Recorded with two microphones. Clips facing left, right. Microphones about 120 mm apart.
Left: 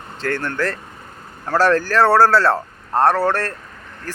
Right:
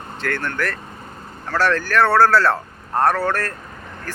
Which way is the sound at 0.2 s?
30° left (ahead or behind).